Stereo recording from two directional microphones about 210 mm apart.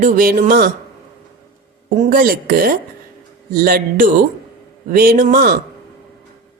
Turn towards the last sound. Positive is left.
turn(degrees=-45)  # may be behind; listen again after turning